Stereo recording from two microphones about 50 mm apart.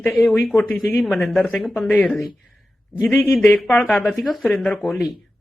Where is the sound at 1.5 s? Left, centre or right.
Centre.